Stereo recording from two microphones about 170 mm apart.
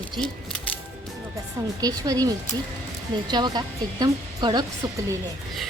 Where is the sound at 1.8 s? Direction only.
20° right (ahead or behind).